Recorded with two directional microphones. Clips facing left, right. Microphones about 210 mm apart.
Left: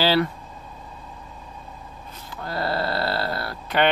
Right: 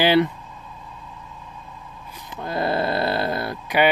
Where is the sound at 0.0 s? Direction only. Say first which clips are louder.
Right 3 dB; 20° right (ahead or behind).